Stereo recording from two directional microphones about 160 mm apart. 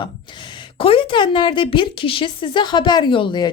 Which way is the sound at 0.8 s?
35° left (ahead or behind).